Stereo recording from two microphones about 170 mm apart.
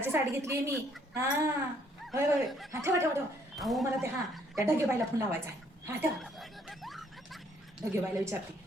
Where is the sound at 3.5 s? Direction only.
Centre (ahead or behind).